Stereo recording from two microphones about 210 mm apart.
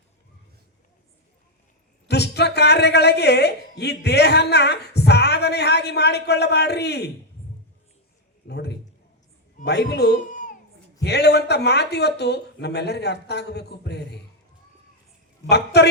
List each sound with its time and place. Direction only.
2.0 s a man's voice: 50° left (ahead or behind)
8.4 s a sound: 50° left (ahead or behind)
9.6 s speech: 50° left (ahead or behind)
11.0 s a man's voice: 50° left (ahead or behind)
15.4 s a man's voice: 50° left (ahead or behind)